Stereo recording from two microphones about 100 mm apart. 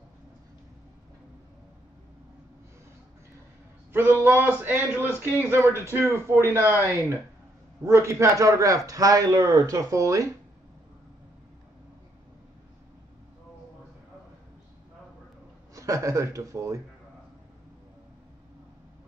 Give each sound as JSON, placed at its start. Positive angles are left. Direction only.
{"t": 4.2, "sound": "a man's voice", "side_deg": -20}
{"t": 15.7, "sound": "a man's voice", "side_deg": -30}